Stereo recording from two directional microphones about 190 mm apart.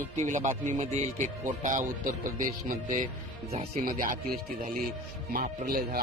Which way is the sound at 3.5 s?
35° right (ahead or behind).